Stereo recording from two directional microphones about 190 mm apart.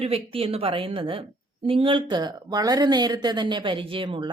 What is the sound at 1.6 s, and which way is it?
Speech, 30° right (ahead or behind).